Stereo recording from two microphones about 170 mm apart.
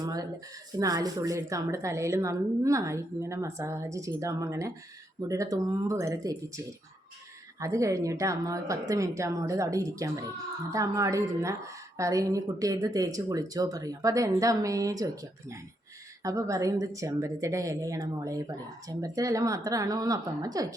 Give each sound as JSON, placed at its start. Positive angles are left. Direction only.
{"t": 0.0, "sound": "a sound", "side_deg": -20}
{"t": 0.8, "sound": "a woman's voice", "side_deg": -20}
{"t": 7.6, "sound": "a woman's voice", "side_deg": -20}